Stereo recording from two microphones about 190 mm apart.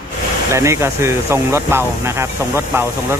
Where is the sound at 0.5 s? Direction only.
15° right (ahead or behind).